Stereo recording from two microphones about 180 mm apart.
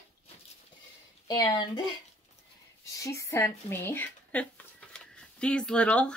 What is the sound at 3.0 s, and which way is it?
Speech, 15° left (ahead or behind).